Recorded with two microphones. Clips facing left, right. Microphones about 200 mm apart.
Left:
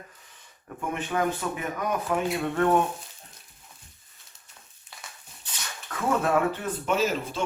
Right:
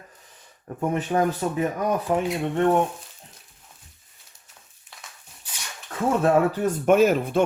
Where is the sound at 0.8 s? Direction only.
40° right (ahead or behind).